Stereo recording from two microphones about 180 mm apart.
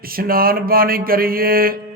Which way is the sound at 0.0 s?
55° right (ahead or behind).